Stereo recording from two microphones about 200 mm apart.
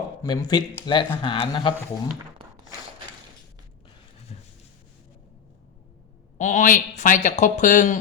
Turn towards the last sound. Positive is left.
turn(degrees=40)  # may be behind; listen again after turning